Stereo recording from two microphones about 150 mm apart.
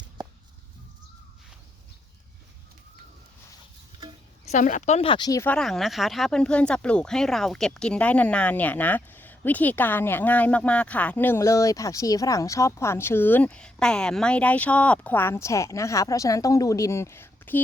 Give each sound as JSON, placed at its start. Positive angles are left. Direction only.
{"t": 4.4, "sound": "speech", "side_deg": 55}
{"t": 5.4, "sound": "speech", "side_deg": 10}